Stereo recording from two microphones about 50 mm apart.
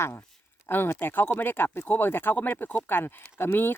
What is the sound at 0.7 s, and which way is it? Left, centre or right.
Speech, left.